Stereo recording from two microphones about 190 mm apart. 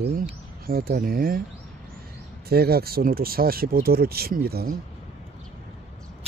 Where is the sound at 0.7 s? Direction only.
50° right (ahead or behind).